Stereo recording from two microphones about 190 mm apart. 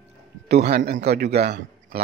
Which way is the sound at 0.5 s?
60° right (ahead or behind).